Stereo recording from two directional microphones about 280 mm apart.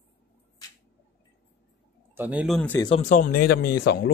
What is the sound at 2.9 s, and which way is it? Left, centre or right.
Speech, left.